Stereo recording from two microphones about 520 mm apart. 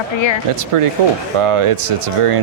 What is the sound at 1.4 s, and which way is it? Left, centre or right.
Speech, right.